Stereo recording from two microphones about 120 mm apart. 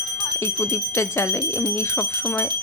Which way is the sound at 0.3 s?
20° left (ahead or behind).